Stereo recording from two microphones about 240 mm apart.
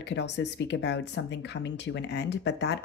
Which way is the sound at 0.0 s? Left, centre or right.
Left.